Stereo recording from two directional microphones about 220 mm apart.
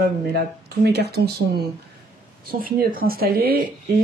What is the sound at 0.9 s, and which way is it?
Speech, 50° right (ahead or behind).